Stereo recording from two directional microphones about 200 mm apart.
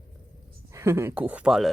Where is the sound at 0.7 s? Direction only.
10° right (ahead or behind).